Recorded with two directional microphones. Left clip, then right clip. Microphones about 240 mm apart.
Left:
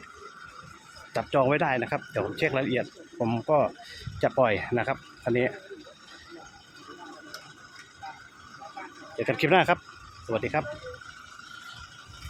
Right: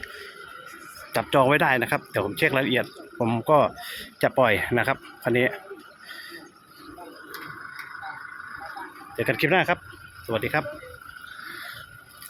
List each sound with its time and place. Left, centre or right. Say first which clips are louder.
1.1 s speech: right 4 dB; centre
9.1 s speech: right 1 dB; centre